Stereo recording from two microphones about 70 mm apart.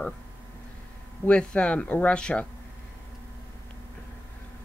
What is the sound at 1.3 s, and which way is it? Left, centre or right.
Speech, centre.